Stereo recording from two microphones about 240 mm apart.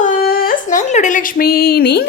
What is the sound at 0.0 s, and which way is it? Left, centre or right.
A woman's voice, left.